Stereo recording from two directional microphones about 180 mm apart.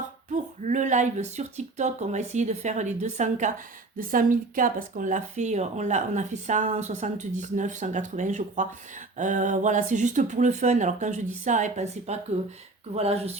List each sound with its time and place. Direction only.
0.3 s speech: 40° right (ahead or behind)